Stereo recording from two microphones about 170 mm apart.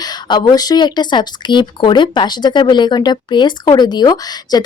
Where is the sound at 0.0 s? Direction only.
25° left (ahead or behind).